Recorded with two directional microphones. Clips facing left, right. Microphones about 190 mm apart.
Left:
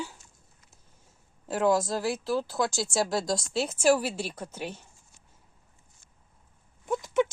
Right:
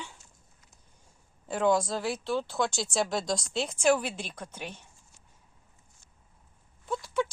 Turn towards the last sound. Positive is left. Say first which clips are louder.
# left 4 dB
turn(degrees=20)  # may be behind; listen again after turning